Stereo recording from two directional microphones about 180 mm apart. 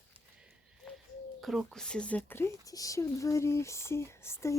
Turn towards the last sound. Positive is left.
turn(degrees=15)  # may be behind; listen again after turning